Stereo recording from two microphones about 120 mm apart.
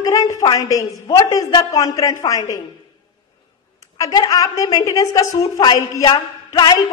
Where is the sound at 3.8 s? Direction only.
30° left (ahead or behind).